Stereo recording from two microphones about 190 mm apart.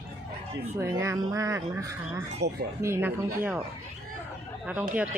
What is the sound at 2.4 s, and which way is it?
Speech, 60° right (ahead or behind).